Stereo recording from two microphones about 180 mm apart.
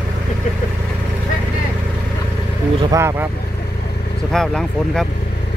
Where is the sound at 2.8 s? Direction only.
15° right (ahead or behind).